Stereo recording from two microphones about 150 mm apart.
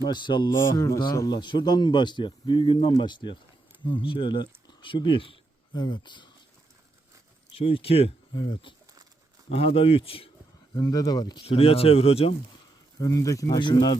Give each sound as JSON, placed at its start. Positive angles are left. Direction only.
{"t": 0.0, "sound": "speech", "side_deg": 30}
{"t": 0.5, "sound": "mantra", "side_deg": 15}
{"t": 0.9, "sound": "speech", "side_deg": 25}
{"t": 7.5, "sound": "speech", "side_deg": 40}
{"t": 10.8, "sound": "speech", "side_deg": 25}
{"t": 11.4, "sound": "speech", "side_deg": 40}
{"t": 13.0, "sound": "speech", "side_deg": 20}